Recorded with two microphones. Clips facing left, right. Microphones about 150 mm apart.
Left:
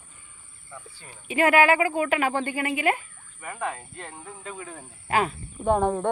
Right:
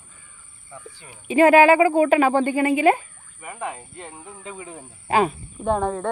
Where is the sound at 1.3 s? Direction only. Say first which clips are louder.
Right 6 dB; 30° right (ahead or behind).